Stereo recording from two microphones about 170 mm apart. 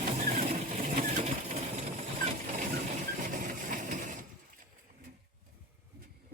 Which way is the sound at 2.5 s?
50° right (ahead or behind).